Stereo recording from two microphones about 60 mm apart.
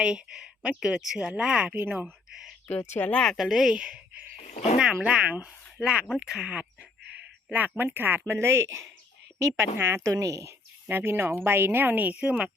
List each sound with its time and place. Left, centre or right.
0.0 s speech: centre
1.7 s a woman's voice: right
2.3 s a sound: centre
2.6 s speech: left
3.3 s speech: centre
7.5 s a woman's voice: right
8.3 s speech: right
10.0 s speech: right
10.8 s a woman's voice: right
12.2 s speech: centre